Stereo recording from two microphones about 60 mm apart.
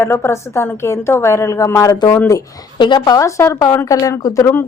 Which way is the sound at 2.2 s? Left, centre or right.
Left.